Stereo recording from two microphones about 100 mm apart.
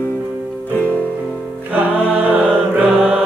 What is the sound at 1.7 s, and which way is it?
Music, 15° right (ahead or behind).